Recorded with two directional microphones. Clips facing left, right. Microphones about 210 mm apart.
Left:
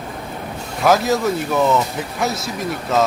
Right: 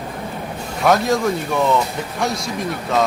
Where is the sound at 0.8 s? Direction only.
5° left (ahead or behind).